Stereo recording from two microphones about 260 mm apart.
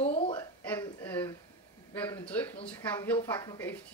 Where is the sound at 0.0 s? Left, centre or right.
Left.